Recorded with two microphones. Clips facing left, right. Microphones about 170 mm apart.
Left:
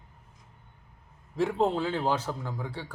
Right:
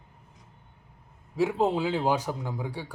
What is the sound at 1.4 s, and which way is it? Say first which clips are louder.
A man's voice: right 1 dB; 5° right (ahead or behind).